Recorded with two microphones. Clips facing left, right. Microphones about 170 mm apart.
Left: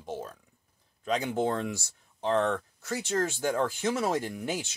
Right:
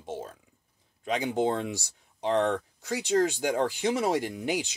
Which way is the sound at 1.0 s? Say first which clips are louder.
Right 1 dB; 15° right (ahead or behind).